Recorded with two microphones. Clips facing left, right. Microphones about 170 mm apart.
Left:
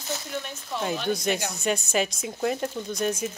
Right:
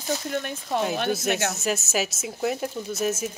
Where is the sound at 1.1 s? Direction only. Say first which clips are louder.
Right 1 dB; 5° right (ahead or behind).